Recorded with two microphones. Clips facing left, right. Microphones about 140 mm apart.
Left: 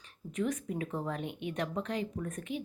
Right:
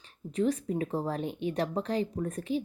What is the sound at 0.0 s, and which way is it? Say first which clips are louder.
Speech: right 5 dB; 30° right (ahead or behind).